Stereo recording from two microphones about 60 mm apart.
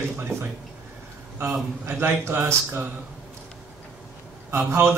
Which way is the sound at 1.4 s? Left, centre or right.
Right.